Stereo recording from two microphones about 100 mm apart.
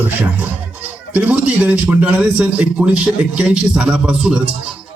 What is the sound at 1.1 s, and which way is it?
A man's voice, 15° right (ahead or behind).